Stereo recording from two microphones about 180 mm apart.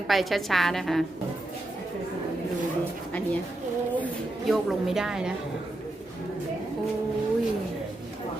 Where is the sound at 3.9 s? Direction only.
5° left (ahead or behind).